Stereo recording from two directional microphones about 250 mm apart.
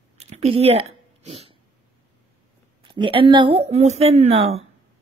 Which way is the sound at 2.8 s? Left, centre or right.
Right.